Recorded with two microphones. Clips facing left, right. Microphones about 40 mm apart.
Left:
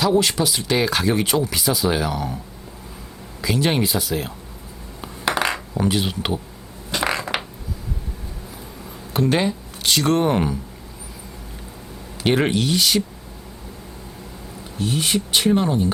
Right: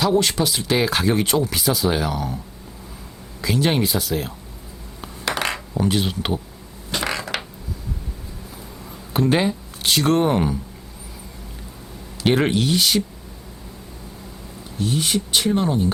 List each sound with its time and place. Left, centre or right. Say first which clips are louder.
0.0 s speech: even; centre
3.4 s speech: even; centre
5.8 s speech: even; centre
6.9 s a sound: left 2 dB; centre
9.1 s speech: right 1 dB; centre
12.2 s speech: even; centre
14.8 s speech: even; centre